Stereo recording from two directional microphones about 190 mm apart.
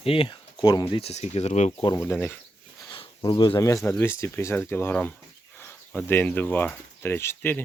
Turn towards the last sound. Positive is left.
turn(degrees=10)  # may be behind; listen again after turning